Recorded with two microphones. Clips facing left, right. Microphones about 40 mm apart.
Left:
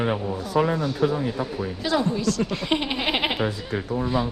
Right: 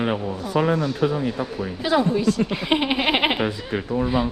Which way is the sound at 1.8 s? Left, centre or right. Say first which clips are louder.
Right 4 dB; centre.